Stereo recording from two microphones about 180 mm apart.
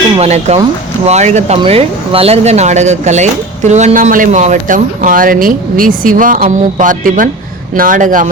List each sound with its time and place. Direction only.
0.2 s speech: 35° right (ahead or behind)